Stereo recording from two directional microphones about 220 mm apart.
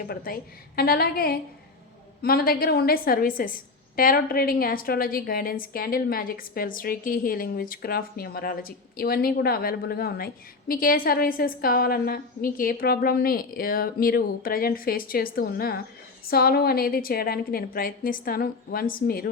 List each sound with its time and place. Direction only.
0.8 s a woman's voice: 45° left (ahead or behind)